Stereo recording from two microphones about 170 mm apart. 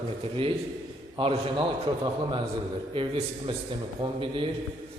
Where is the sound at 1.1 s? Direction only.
30° right (ahead or behind).